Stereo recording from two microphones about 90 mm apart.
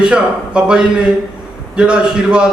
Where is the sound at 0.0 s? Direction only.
10° right (ahead or behind).